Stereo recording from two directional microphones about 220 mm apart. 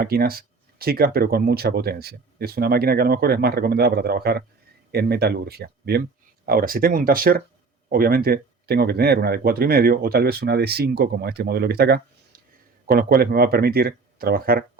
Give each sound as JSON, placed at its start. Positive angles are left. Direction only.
{"t": 0.0, "sound": "speech", "side_deg": -45}